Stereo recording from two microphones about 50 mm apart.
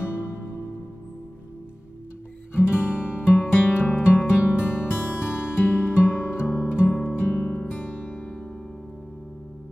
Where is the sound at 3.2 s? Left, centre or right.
Left.